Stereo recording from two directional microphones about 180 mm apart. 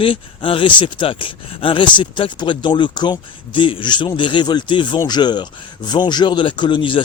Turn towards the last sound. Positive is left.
turn(degrees=25)  # may be behind; listen again after turning